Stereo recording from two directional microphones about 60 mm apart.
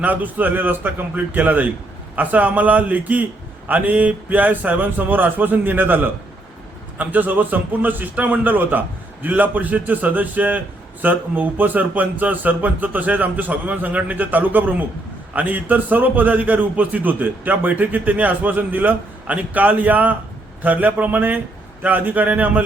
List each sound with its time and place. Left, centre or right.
0.0 s a man's voice: right